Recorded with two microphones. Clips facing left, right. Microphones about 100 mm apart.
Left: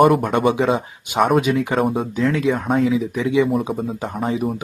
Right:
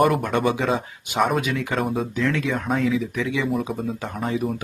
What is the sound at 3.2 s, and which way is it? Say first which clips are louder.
Speech: left 7 dB; 25° left (ahead or behind).